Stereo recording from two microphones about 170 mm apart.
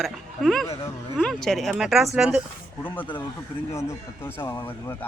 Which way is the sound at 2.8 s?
10° left (ahead or behind).